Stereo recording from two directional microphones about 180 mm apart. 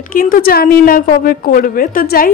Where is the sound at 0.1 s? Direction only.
50° left (ahead or behind).